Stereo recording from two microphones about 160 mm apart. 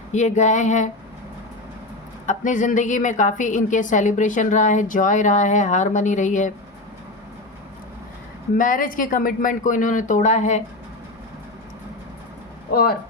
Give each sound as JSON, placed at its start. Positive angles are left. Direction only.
{"t": 0.1, "sound": "a woman's voice", "side_deg": 50}
{"t": 2.2, "sound": "a woman's voice", "side_deg": 55}
{"t": 8.5, "sound": "speech", "side_deg": 60}